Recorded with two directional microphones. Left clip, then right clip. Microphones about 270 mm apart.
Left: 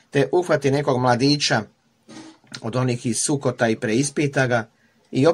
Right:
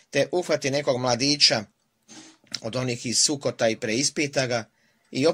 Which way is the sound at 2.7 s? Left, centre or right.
Right.